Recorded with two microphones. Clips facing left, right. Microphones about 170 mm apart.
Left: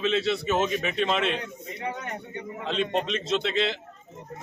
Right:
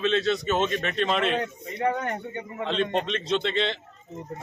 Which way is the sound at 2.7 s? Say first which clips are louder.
Right 1 dB; centre (ahead or behind).